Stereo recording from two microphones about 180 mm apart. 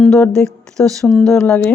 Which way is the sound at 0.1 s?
5° left (ahead or behind).